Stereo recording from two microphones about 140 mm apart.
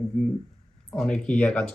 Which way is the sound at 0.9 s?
5° left (ahead or behind).